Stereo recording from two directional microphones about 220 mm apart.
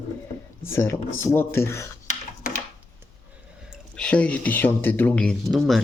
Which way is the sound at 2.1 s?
35° left (ahead or behind).